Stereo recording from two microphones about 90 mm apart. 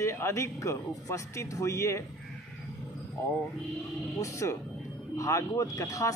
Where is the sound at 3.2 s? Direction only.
35° left (ahead or behind).